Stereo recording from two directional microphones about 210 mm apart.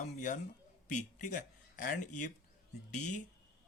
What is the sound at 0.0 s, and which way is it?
Speech, 35° left (ahead or behind).